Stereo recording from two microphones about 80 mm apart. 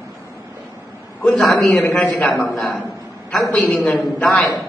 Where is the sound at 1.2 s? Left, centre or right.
Centre.